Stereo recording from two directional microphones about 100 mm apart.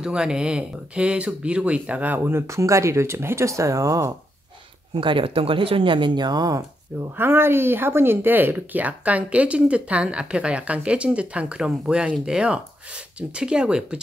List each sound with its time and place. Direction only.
0.0 s speech: 10° right (ahead or behind); by 4.1 s 30° right (ahead or behind)
4.9 s speech: 60° right (ahead or behind); by 6.6 s 40° right (ahead or behind)
7.2 s speech: 25° right (ahead or behind)